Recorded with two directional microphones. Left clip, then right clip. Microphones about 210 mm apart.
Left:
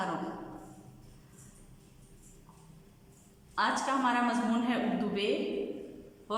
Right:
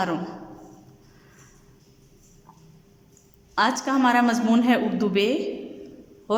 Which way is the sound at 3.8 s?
40° right (ahead or behind).